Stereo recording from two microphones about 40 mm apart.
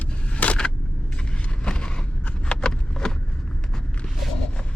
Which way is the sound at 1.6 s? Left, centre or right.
Left.